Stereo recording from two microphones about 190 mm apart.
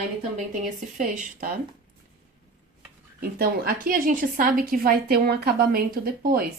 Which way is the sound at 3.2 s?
50° right (ahead or behind).